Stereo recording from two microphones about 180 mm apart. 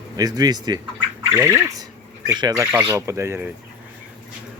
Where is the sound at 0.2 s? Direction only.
20° right (ahead or behind).